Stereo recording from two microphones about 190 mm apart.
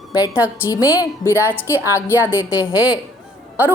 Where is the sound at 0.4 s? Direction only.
10° right (ahead or behind).